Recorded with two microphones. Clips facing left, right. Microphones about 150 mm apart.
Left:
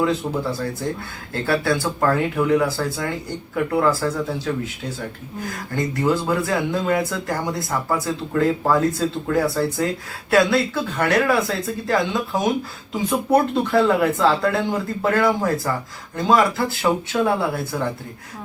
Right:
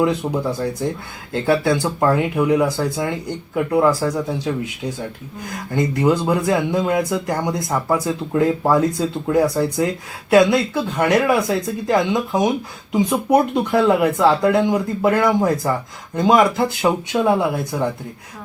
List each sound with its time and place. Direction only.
0.0 s speech: 15° right (ahead or behind)
5.7 s speech: 20° right (ahead or behind)